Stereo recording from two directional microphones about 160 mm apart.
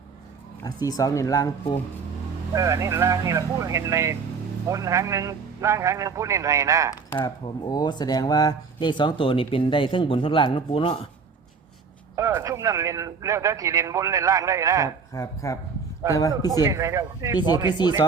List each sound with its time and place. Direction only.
0.6 s speech: 25° left (ahead or behind)
2.6 s a man's voice: 20° right (ahead or behind)
7.1 s speech: 20° left (ahead or behind)
12.1 s a man's voice: 20° right (ahead or behind)
15.1 s speech: 20° left (ahead or behind)
16.0 s a man's voice: 20° right (ahead or behind)
17.7 s speech: 25° left (ahead or behind)